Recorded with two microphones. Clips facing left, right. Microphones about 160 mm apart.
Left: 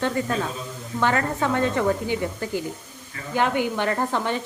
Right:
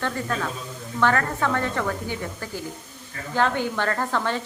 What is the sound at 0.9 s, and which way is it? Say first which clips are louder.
Speech: even; 20° left (ahead or behind).